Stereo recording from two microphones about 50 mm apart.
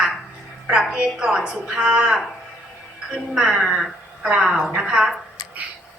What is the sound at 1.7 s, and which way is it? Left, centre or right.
Speech, centre.